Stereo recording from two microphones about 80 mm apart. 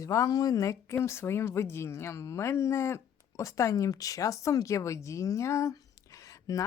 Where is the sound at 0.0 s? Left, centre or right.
Left.